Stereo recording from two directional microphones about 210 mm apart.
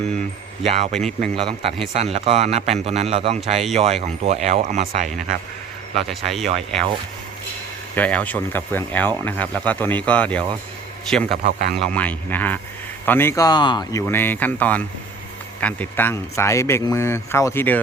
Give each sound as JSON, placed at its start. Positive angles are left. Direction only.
{"t": 0.7, "sound": "speech", "side_deg": -30}
{"t": 0.9, "sound": "speech", "side_deg": 0}
{"t": 1.4, "sound": "a man's voice", "side_deg": -25}
{"t": 5.0, "sound": "speech", "side_deg": 0}
{"t": 7.9, "sound": "a man's voice", "side_deg": 5}
{"t": 11.3, "sound": "speech", "side_deg": -50}
{"t": 11.8, "sound": "speech", "side_deg": 5}